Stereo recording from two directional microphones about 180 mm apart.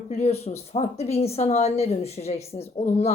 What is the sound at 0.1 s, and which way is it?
Speech, 35° left (ahead or behind).